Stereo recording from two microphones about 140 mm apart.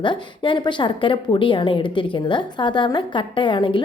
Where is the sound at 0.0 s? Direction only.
35° left (ahead or behind).